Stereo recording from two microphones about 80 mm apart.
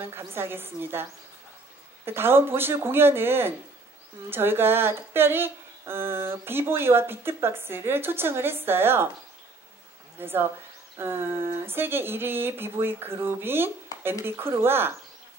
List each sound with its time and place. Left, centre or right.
0.3 s speech: right
2.0 s speech: right
10.1 s speech: right